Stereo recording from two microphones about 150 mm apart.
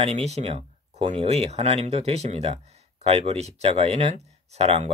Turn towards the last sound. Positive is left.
turn(degrees=-45)  # may be behind; listen again after turning